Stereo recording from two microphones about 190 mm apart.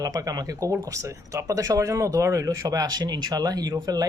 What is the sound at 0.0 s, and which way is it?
Speech, 20° right (ahead or behind).